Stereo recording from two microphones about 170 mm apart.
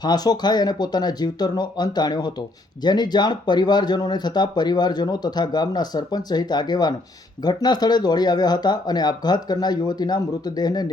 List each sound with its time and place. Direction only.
0.0 s speech: 25° left (ahead or behind)